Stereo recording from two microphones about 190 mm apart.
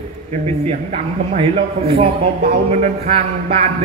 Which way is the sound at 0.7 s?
35° right (ahead or behind).